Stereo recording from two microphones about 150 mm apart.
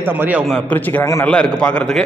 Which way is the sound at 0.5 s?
10° left (ahead or behind).